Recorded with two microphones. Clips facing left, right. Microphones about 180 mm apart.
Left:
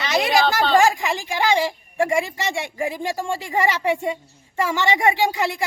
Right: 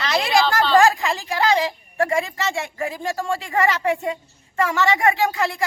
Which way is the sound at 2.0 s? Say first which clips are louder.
Left 1 dB; 15° left (ahead or behind).